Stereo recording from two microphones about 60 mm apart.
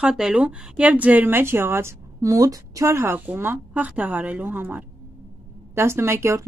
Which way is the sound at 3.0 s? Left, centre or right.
Right.